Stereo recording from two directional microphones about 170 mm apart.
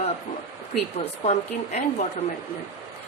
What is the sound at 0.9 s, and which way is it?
Speech, 40° left (ahead or behind).